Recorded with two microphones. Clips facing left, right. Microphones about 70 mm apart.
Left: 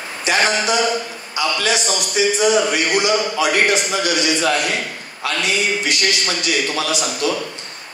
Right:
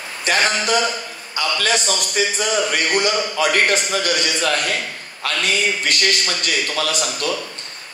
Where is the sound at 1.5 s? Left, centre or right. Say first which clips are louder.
Right 2 dB; right.